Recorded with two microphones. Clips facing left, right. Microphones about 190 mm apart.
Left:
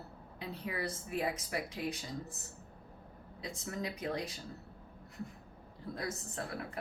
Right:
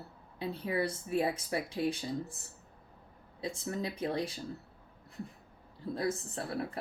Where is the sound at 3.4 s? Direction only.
30° right (ahead or behind).